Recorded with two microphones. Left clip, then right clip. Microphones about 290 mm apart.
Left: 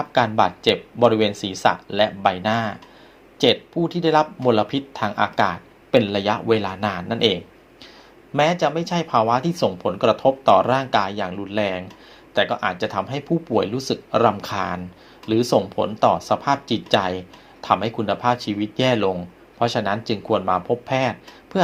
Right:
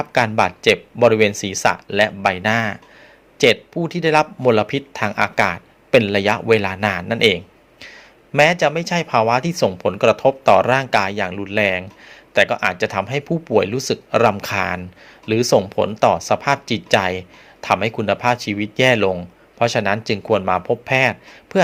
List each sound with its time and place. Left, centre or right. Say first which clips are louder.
0.0 s speech: right 1 dB; right